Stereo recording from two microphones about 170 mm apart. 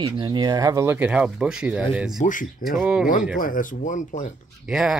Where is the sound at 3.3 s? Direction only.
55° left (ahead or behind).